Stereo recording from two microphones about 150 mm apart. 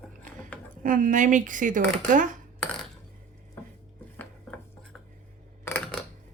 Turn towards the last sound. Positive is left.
turn(degrees=5)  # may be behind; listen again after turning